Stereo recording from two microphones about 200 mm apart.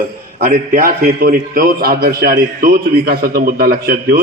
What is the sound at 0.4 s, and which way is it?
A man's voice, 45° right (ahead or behind).